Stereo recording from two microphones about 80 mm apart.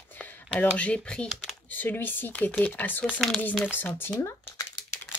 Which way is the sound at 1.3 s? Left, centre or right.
Centre.